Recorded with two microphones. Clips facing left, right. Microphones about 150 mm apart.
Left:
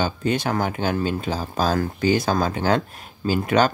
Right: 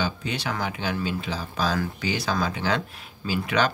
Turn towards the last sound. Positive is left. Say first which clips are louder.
# left 5 dB
turn(degrees=45)  # may be behind; listen again after turning